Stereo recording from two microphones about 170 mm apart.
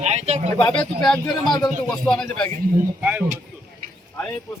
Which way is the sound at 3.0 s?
10° right (ahead or behind).